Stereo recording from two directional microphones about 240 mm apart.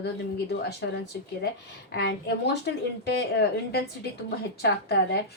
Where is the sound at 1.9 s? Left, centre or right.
Left.